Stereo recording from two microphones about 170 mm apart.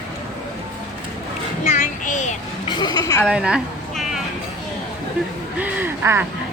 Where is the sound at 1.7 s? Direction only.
50° left (ahead or behind).